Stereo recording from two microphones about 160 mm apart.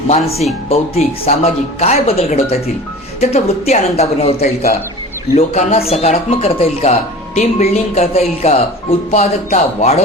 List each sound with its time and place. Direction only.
0.7 s speech: 40° left (ahead or behind)